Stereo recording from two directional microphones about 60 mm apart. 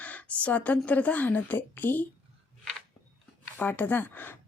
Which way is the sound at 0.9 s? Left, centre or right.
Left.